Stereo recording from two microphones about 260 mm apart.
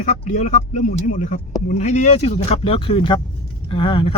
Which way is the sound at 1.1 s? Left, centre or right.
Left.